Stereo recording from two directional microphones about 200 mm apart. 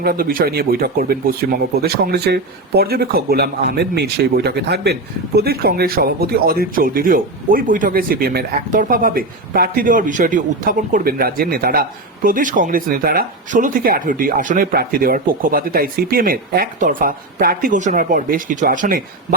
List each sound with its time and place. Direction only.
0.0 s speech: 45° right (ahead or behind)